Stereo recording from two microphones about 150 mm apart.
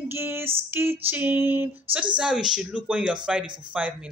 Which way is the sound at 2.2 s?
5° right (ahead or behind).